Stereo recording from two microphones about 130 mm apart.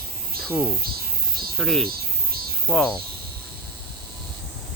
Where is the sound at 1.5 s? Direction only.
5° left (ahead or behind).